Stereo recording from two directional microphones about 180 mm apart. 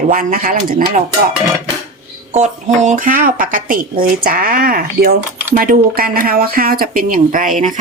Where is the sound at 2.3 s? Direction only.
40° right (ahead or behind).